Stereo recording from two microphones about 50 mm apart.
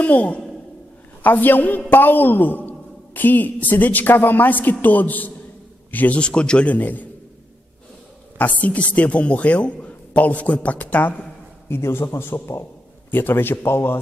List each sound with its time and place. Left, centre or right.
0.0 s a man's voice: left
6.1 s a man's voice: left
6.7 s speech: left
8.4 s speech: left
11.7 s a man's voice: left
13.1 s speech: left